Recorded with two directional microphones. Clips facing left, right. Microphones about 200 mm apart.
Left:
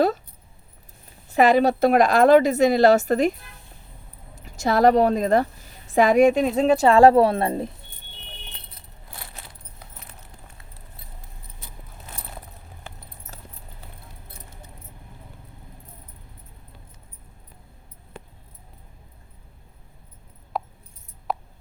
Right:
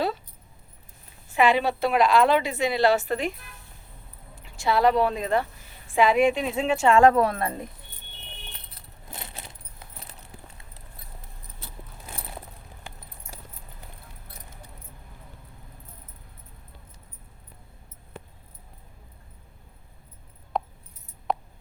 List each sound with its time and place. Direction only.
1.3 s a woman's voice: 40° left (ahead or behind)
4.4 s a woman's voice: 40° left (ahead or behind)
9.1 s keys jangling: 25° right (ahead or behind)
13.3 s keys jangling: 15° right (ahead or behind)
20.5 s keys jangling: 5° left (ahead or behind)
21.3 s a sound: 5° left (ahead or behind)